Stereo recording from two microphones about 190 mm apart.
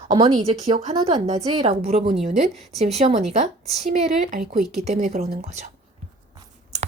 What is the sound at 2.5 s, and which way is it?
Speech, centre (ahead or behind).